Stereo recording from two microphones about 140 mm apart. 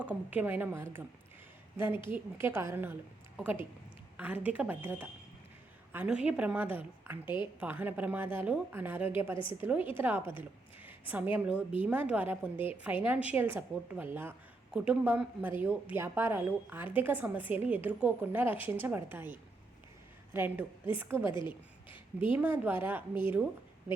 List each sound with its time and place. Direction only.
0.0 s a woman's voice: 10° right (ahead or behind)
21.3 s speech: 35° left (ahead or behind)
22.3 s a woman's voice: 15° right (ahead or behind)